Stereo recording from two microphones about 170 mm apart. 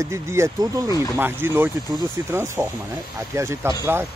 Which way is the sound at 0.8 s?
20° left (ahead or behind).